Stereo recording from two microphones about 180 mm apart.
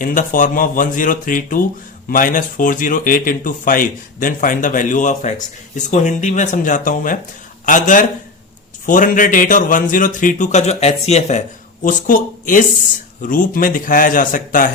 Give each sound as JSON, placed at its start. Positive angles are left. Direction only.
{"t": 0.0, "sound": "a man's voice", "side_deg": 45}